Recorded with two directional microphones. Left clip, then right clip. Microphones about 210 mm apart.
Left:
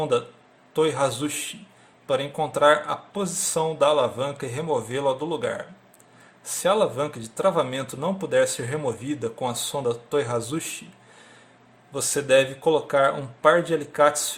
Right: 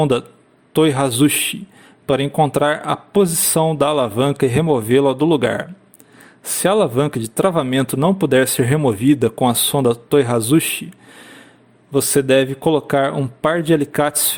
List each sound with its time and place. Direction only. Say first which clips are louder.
0.7 s speech: right 6 dB; 45° right (ahead or behind)
11.9 s speech: right 6 dB; 40° right (ahead or behind)